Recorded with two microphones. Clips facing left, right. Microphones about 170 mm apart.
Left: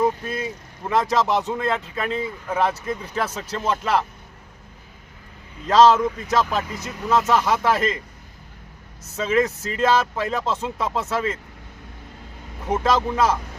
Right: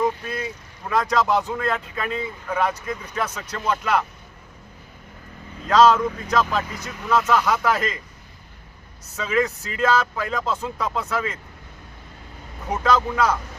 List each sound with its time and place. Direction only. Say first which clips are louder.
0.0 s vehicle: left 2 dB; 25° left (ahead or behind)
1.1 s speech: even; 20° left (ahead or behind)
5.6 s speech: left 1 dB; 25° left (ahead or behind)
9.1 s speech: left 2 dB; 25° left (ahead or behind)
12.7 s speech: left 1 dB; 25° left (ahead or behind)